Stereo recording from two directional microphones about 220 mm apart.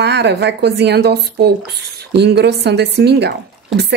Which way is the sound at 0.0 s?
50° right (ahead or behind).